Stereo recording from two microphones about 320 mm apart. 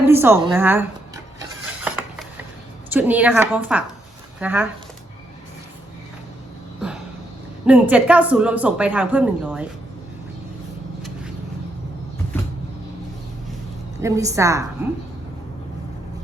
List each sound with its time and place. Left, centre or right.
0.0 s a woman's voice: centre
1.8 s a sound: centre
2.9 s speech: centre
7.7 s speech: centre
14.0 s a woman's voice: centre